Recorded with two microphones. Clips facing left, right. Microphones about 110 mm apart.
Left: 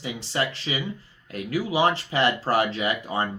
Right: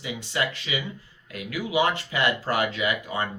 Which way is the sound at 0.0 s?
35° left (ahead or behind).